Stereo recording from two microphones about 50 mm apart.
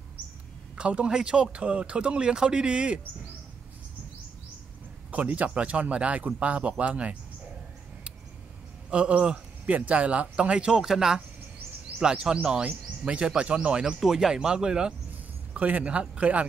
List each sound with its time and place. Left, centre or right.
0.7 s speech: right
5.1 s speech: right
8.9 s speech: right
10.7 s speech: centre
13.9 s speech: centre; by 16.4 s right